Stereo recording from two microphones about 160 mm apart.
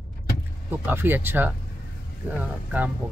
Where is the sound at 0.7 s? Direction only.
15° right (ahead or behind).